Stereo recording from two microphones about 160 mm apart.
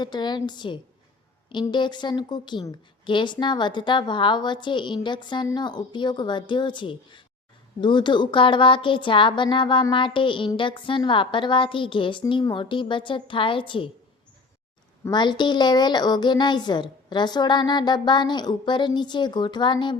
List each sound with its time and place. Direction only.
0.0 s a woman's voice: 25° left (ahead or behind)
15.1 s a woman's voice: 30° left (ahead or behind)